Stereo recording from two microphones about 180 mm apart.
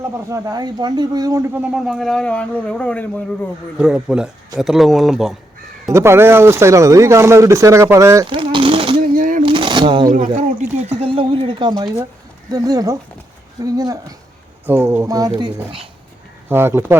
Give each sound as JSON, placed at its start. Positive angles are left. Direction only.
{"t": 0.0, "sound": "speech", "side_deg": -15}
{"t": 3.8, "sound": "speech", "side_deg": -5}
{"t": 5.9, "sound": "speech", "side_deg": -15}
{"t": 8.3, "sound": "a sound", "side_deg": -30}
{"t": 9.0, "sound": "a sound", "side_deg": -50}
{"t": 9.4, "sound": "shuffling cards", "side_deg": -30}
{"t": 10.2, "sound": "speech", "side_deg": -40}
{"t": 16.5, "sound": "speech", "side_deg": -15}